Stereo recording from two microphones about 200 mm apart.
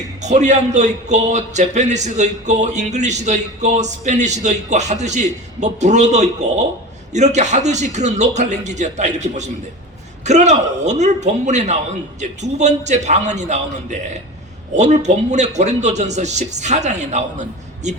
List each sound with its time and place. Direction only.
0.2 s a man's voice: 35° right (ahead or behind)